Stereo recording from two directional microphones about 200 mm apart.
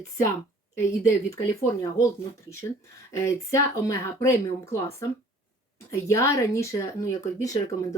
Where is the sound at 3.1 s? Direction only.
15° left (ahead or behind).